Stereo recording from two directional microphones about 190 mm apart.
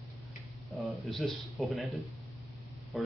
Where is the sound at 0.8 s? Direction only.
Centre (ahead or behind).